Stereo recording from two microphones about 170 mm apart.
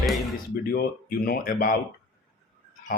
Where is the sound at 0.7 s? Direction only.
60° left (ahead or behind).